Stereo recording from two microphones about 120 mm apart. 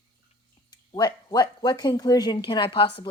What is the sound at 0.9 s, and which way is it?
Speech, 35° left (ahead or behind).